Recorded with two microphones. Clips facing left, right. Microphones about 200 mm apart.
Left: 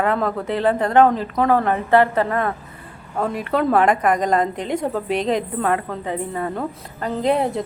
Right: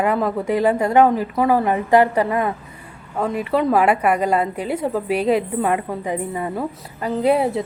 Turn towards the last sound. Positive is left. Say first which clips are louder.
# right 2 dB
turn(degrees=-5)  # may be behind; listen again after turning